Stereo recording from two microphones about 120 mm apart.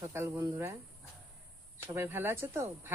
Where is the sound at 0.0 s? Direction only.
20° right (ahead or behind).